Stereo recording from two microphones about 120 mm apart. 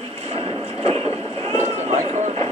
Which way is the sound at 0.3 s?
50° right (ahead or behind).